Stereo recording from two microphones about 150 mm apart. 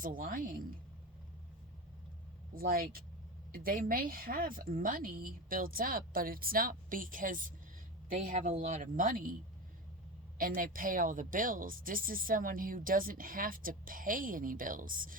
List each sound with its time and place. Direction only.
0.0 s speech: 70° right (ahead or behind)
2.6 s a woman's voice: 75° right (ahead or behind)
10.3 s speech: 70° right (ahead or behind)